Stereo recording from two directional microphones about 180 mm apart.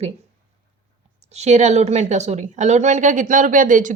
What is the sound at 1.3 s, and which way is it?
A woman's voice, 40° right (ahead or behind).